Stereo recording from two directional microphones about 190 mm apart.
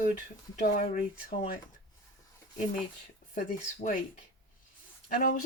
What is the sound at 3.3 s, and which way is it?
Speech, 45° left (ahead or behind).